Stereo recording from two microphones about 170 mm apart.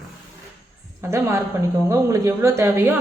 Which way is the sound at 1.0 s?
15° right (ahead or behind).